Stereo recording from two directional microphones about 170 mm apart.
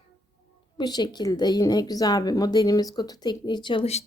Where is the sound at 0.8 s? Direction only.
25° left (ahead or behind).